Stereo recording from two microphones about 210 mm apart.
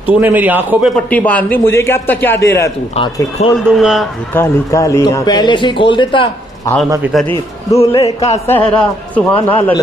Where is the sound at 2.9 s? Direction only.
25° left (ahead or behind).